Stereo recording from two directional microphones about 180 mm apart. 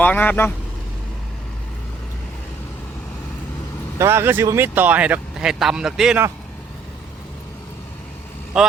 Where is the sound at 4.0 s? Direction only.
15° right (ahead or behind).